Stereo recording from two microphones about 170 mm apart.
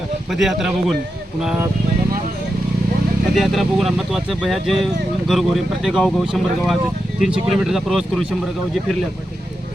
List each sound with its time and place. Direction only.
0.3 s speech: centre (ahead or behind)
3.3 s speech: centre (ahead or behind)